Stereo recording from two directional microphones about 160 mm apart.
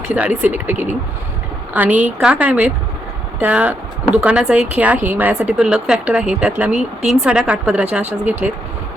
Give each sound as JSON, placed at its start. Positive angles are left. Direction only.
{"t": 0.1, "sound": "a woman's voice", "side_deg": -10}